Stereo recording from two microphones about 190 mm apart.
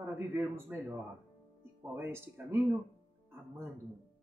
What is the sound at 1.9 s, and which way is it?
Speech, 10° right (ahead or behind).